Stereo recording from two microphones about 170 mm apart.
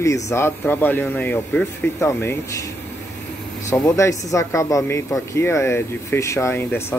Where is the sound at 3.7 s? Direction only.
15° left (ahead or behind).